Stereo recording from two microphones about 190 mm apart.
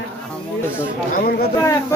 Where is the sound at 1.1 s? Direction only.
55° left (ahead or behind).